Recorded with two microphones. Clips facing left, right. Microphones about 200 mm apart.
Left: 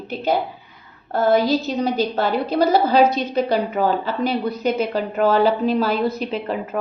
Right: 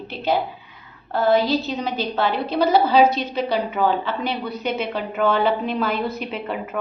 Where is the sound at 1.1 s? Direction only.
45° left (ahead or behind).